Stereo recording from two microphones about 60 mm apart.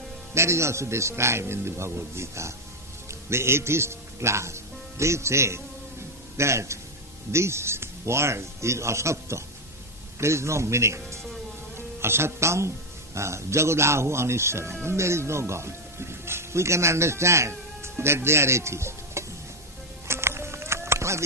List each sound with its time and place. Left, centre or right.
0.3 s speech: right
18.0 s stir: right
20.1 s music: right